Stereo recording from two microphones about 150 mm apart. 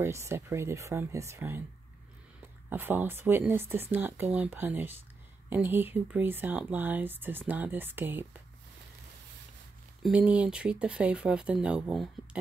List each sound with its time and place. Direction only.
0.0 s speech: 15° right (ahead or behind)
2.7 s speech: 15° right (ahead or behind)
10.0 s speech: 10° right (ahead or behind)